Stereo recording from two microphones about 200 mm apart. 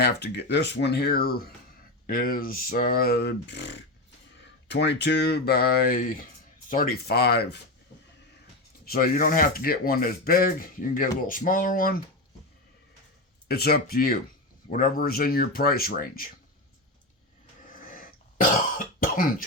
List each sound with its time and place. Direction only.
0.0 s speech: 55° left (ahead or behind)
8.8 s speech: 45° left (ahead or behind)
13.5 s speech: 50° left (ahead or behind)
17.9 s throat clearing: 45° left (ahead or behind)
18.9 s cough: 45° left (ahead or behind)